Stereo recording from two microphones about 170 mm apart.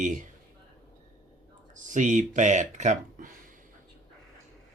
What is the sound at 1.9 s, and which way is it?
Speech, 45° right (ahead or behind).